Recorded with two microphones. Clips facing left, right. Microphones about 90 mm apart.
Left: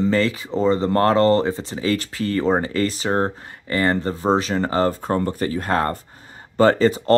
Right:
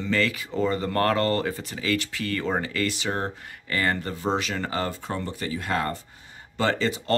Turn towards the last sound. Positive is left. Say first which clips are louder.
# left 9 dB
turn(degrees=40)  # may be behind; listen again after turning